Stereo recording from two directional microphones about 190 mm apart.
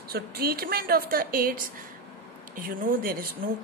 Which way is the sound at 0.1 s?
55° right (ahead or behind).